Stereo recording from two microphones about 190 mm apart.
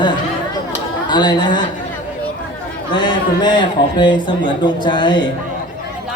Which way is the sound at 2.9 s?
25° left (ahead or behind).